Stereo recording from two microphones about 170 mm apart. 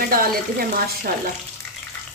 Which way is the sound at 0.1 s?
60° right (ahead or behind).